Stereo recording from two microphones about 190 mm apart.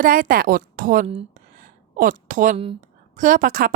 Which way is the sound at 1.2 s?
45° right (ahead or behind).